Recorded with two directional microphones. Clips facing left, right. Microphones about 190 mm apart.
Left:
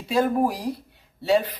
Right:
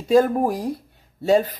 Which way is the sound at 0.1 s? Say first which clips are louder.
Right 5 dB; 50° right (ahead or behind).